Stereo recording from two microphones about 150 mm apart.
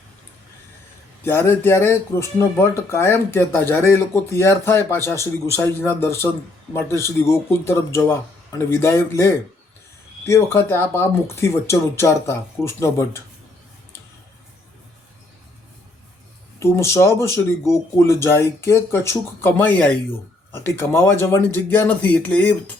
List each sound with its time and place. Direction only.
1.2 s speech: 15° left (ahead or behind)
16.6 s speech: 20° left (ahead or behind)